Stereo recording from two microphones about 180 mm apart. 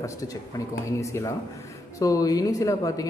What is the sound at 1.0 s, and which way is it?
A man's voice, 15° left (ahead or behind).